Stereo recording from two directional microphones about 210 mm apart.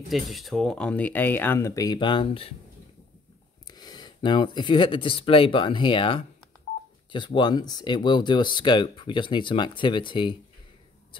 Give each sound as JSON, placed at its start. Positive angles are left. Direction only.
{"t": 0.1, "sound": "speech", "side_deg": 0}
{"t": 3.7, "sound": "speech", "side_deg": 20}